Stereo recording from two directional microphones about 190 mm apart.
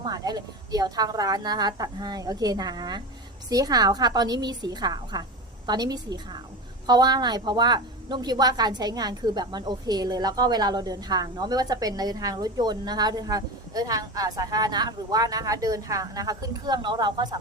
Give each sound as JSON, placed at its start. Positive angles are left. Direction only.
{"t": 0.0, "sound": "a woman's voice", "side_deg": -20}